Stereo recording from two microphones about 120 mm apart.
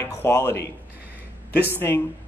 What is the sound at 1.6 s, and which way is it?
Speech, 15° left (ahead or behind).